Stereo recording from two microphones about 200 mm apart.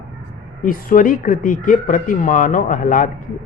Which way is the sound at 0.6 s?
45° left (ahead or behind).